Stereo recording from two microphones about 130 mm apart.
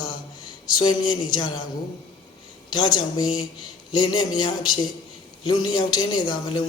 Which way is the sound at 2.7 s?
35° left (ahead or behind).